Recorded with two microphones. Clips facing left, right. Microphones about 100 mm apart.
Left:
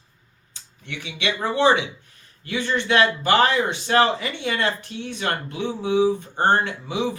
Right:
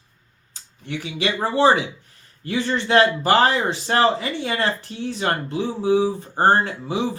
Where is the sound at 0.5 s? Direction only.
35° right (ahead or behind).